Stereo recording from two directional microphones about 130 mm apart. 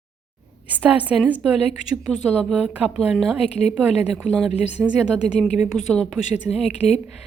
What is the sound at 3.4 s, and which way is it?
Speech, 55° left (ahead or behind).